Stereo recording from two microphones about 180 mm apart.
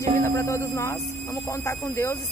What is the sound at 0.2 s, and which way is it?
Buzzer, 15° left (ahead or behind).